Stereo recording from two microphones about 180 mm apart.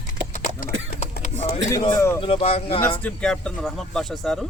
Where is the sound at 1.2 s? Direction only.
40° left (ahead or behind).